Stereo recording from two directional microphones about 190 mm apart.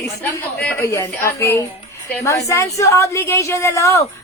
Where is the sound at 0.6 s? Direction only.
10° left (ahead or behind).